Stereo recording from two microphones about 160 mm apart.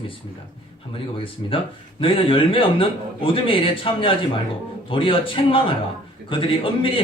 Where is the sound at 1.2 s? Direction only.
35° left (ahead or behind).